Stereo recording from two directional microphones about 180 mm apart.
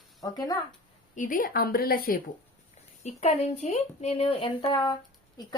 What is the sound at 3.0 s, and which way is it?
Speech, 35° left (ahead or behind).